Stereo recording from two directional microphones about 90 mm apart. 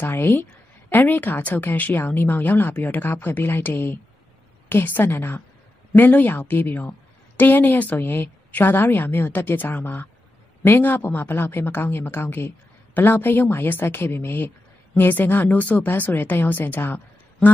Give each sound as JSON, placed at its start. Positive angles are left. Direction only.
{"t": 0.0, "sound": "a woman's voice", "side_deg": 25}